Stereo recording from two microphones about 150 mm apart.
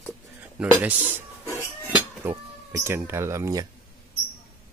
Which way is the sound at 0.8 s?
10° right (ahead or behind).